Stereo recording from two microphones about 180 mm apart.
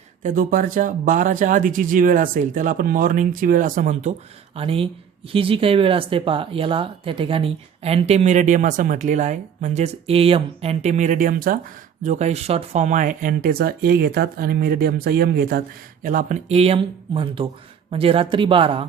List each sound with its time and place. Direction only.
0.2 s speech: 45° right (ahead or behind)
4.5 s speech: 30° right (ahead or behind); by 11.6 s 50° right (ahead or behind)
12.0 s speech: 40° right (ahead or behind)
16.5 s speech: 35° right (ahead or behind)